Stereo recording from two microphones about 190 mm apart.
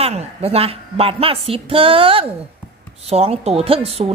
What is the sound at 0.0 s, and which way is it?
A woman's voice, 30° right (ahead or behind).